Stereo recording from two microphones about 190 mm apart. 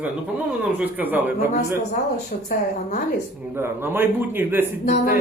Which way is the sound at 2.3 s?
45° left (ahead or behind).